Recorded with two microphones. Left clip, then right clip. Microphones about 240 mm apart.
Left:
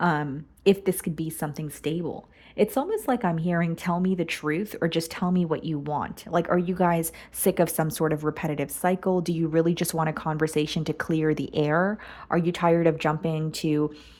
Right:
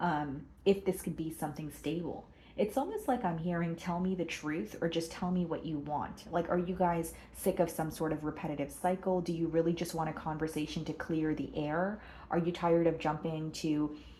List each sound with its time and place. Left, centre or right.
0.0 s a woman's voice: left